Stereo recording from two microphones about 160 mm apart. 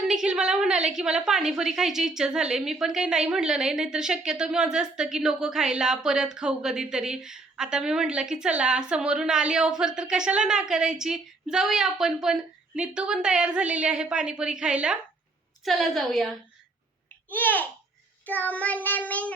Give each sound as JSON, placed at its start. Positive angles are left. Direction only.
{"t": 0.0, "sound": "a woman's voice", "side_deg": -5}
{"t": 18.3, "sound": "child singing", "side_deg": 10}